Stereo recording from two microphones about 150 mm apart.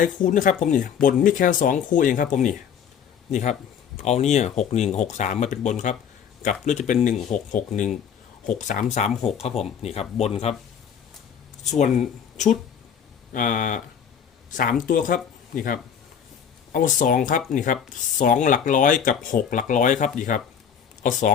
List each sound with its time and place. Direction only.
0.3 s speech: 60° left (ahead or behind); by 10.3 s 45° left (ahead or behind)
11.6 s speech: 55° left (ahead or behind)